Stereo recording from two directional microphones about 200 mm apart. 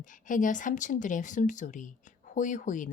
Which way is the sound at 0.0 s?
40° left (ahead or behind).